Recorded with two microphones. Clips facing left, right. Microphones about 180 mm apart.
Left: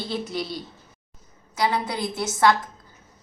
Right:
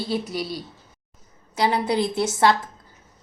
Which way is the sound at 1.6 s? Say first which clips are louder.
Right 4 dB; 30° right (ahead or behind).